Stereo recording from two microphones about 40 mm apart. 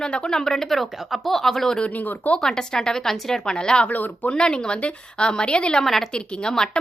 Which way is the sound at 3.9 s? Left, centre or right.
Left.